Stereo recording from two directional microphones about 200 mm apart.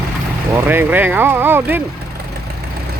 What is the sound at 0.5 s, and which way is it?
Speech, 10° right (ahead or behind).